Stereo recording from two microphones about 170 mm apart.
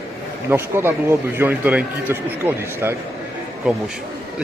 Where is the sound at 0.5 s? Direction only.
15° right (ahead or behind).